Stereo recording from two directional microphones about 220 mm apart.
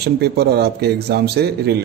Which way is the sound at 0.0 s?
45° right (ahead or behind).